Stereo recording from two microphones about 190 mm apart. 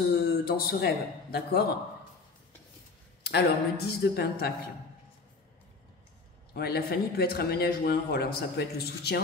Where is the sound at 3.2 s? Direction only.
55° left (ahead or behind).